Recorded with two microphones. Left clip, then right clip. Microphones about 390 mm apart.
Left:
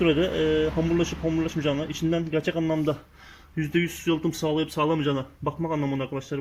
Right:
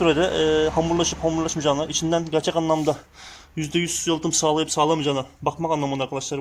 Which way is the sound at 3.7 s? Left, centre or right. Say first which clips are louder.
Right 2 dB; centre.